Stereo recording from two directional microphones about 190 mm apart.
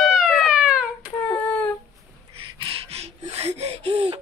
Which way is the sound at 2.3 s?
30° right (ahead or behind).